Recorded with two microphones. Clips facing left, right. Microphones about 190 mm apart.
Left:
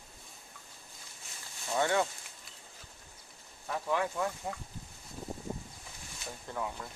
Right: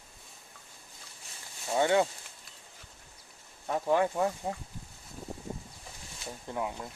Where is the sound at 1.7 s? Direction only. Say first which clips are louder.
Right 4 dB; 20° right (ahead or behind).